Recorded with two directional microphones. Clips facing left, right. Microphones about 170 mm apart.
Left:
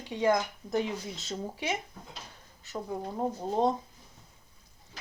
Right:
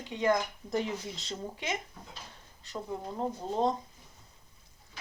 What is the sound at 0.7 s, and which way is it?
A woman's voice, centre (ahead or behind).